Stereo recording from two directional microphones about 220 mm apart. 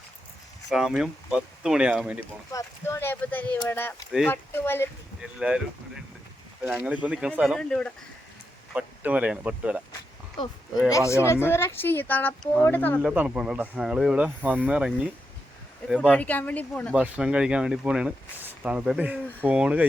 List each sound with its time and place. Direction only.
0.7 s speech: centre (ahead or behind)
2.5 s speech: 15° left (ahead or behind)
5.4 s speech: 5° right (ahead or behind)
10.4 s speech: 20° left (ahead or behind)
13.0 s speech: 5° right (ahead or behind)
16.9 s speech: 5° right (ahead or behind)